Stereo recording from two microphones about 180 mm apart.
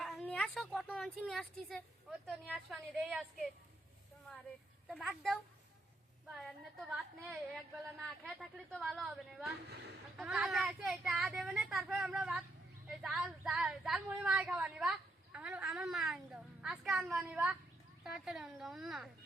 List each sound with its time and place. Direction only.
0.0 s speech: 5° left (ahead or behind)
2.2 s a woman's voice: 10° right (ahead or behind)
4.9 s a woman's voice: centre (ahead or behind)
8.2 s a woman's voice: centre (ahead or behind)
9.6 s speech: 65° right (ahead or behind)
10.2 s a woman's voice: 5° right (ahead or behind)